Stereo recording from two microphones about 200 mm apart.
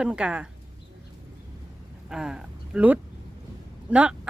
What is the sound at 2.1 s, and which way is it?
Speech, 5° right (ahead or behind).